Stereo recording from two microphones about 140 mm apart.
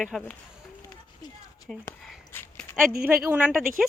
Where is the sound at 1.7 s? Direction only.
Centre (ahead or behind).